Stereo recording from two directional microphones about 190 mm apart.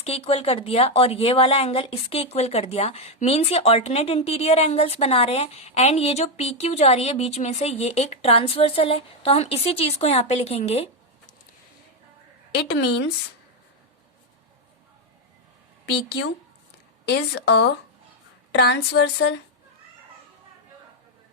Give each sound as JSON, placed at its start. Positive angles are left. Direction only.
{"t": 0.0, "sound": "speech", "side_deg": 35}
{"t": 12.5, "sound": "a woman's voice", "side_deg": 60}
{"t": 17.1, "sound": "a woman's voice", "side_deg": 60}